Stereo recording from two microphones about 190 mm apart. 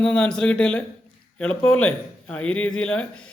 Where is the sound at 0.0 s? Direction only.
5° left (ahead or behind).